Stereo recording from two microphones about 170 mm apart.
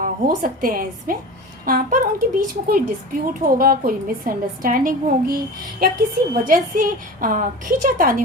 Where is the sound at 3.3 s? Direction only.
55° right (ahead or behind).